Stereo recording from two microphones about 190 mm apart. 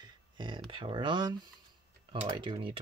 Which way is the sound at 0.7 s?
25° right (ahead or behind).